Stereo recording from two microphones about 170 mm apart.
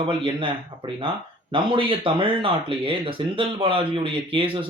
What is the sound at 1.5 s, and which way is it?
Speech, 30° right (ahead or behind).